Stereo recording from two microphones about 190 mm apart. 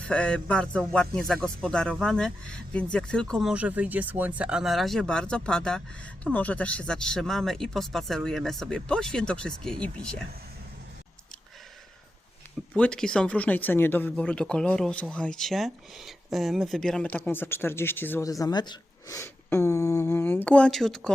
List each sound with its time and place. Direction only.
0.1 s speech: 5° left (ahead or behind)
12.7 s speech: 5° left (ahead or behind)